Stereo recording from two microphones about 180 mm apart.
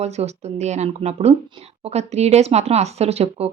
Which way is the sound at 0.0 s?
35° right (ahead or behind).